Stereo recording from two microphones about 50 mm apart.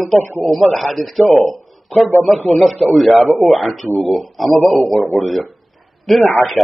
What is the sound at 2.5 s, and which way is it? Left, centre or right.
A man's voice, centre.